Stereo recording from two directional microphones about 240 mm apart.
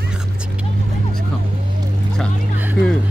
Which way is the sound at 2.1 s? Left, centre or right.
Centre.